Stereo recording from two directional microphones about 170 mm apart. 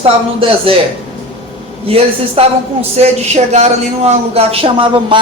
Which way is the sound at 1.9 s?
35° right (ahead or behind).